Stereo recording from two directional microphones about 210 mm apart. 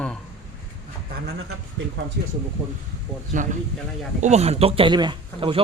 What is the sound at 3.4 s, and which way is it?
Speech, 40° right (ahead or behind).